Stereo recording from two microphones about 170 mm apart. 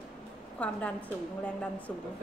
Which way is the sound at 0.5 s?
5° left (ahead or behind).